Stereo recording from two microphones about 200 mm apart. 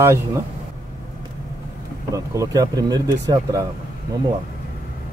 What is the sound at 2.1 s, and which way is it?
Speech, 15° right (ahead or behind).